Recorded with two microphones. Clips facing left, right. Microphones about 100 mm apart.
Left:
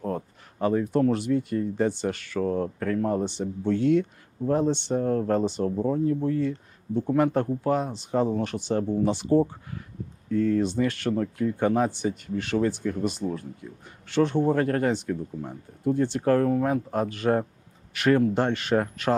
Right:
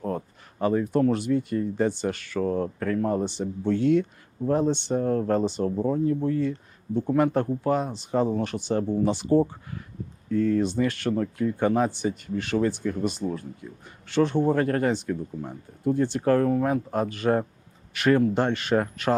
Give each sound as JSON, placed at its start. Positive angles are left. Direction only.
{"t": 0.6, "sound": "speech", "side_deg": -20}
{"t": 10.8, "sound": "speech", "side_deg": -15}